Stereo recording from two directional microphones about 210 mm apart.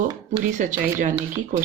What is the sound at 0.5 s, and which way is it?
Speech, 35° right (ahead or behind).